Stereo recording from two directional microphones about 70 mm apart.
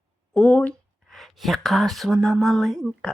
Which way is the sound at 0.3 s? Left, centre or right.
Centre.